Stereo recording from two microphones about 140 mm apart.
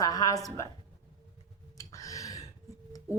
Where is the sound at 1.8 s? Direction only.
25° left (ahead or behind).